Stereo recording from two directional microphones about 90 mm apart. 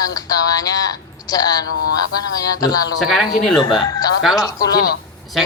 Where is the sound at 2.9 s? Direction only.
5° right (ahead or behind).